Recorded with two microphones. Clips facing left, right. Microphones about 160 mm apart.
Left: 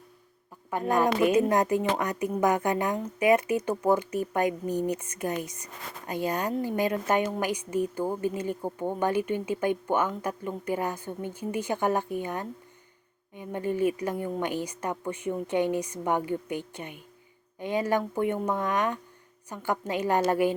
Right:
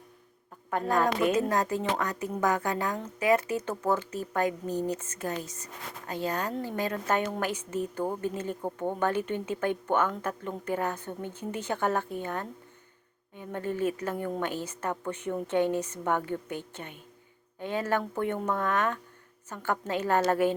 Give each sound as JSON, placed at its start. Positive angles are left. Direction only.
{"t": 0.9, "sound": "speech", "side_deg": 15}